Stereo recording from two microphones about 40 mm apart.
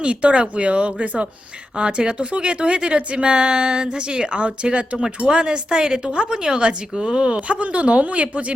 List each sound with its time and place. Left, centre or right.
0.0 s speech: right
7.4 s speech: right